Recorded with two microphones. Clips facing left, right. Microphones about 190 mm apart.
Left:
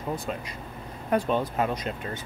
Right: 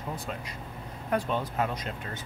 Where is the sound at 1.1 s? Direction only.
20° left (ahead or behind).